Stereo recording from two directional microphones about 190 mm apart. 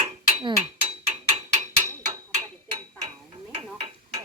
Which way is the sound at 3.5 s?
35° right (ahead or behind).